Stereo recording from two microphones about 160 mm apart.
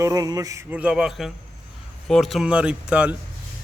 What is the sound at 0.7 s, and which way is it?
A man's voice, 5° right (ahead or behind).